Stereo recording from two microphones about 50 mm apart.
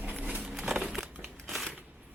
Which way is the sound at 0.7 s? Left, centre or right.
Right.